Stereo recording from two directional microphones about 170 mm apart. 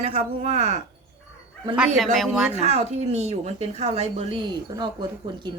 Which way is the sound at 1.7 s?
5° right (ahead or behind).